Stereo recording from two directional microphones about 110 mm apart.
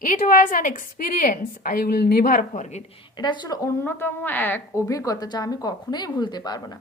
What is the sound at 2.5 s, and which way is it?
Speech, 90° left.